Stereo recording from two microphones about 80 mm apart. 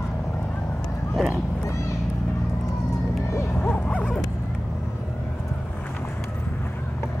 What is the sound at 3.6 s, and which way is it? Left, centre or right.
Dog, left.